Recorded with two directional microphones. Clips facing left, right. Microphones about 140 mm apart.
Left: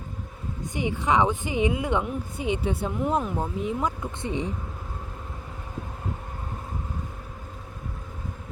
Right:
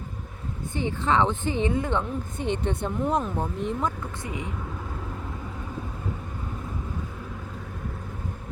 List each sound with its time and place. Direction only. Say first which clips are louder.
0.7 s a woman's voice: left 1 dB; 15° left (ahead or behind)
4.2 s speech: left 6 dB; 30° left (ahead or behind)